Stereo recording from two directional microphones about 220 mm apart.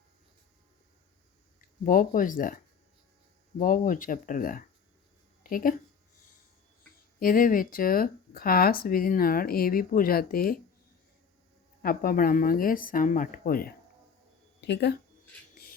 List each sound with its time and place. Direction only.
1.8 s speech: 40° left (ahead or behind)
3.6 s speech: 40° left (ahead or behind)
5.4 s a sound: 40° left (ahead or behind)
7.2 s speech: 40° left (ahead or behind)
11.8 s speech: 40° left (ahead or behind)